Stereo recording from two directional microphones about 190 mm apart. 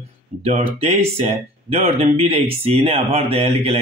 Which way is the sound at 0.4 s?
35° right (ahead or behind).